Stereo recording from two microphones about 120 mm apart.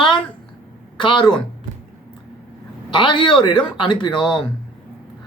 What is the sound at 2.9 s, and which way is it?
Speech, 40° left (ahead or behind).